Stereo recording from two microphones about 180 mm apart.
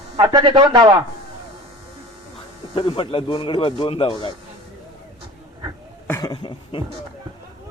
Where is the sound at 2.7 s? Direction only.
25° left (ahead or behind).